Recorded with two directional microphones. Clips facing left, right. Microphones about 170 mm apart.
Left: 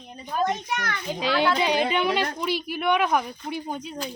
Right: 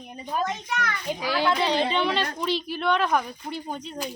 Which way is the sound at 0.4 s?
60° left (ahead or behind).